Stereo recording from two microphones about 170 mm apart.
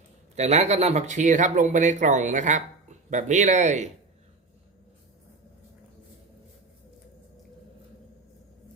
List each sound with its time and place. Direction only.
0.3 s speech: 40° right (ahead or behind)